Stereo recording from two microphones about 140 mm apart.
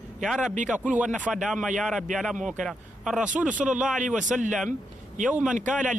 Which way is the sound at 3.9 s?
65° right (ahead or behind).